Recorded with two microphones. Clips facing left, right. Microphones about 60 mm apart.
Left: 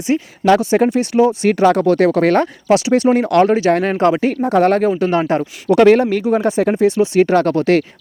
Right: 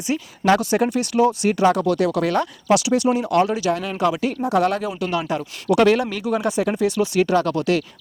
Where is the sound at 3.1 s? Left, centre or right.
Left.